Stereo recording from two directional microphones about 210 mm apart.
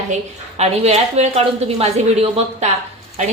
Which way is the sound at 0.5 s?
30° right (ahead or behind).